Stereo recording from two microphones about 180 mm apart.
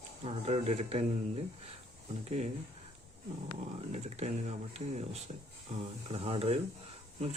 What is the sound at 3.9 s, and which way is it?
Speech, 35° right (ahead or behind).